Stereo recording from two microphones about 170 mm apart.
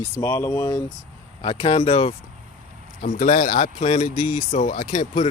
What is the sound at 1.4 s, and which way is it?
Speech, 30° left (ahead or behind).